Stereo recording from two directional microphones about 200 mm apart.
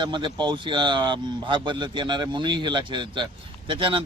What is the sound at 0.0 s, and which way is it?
A man's voice, 25° right (ahead or behind).